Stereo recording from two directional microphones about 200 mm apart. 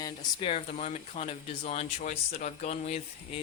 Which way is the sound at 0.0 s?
25° left (ahead or behind).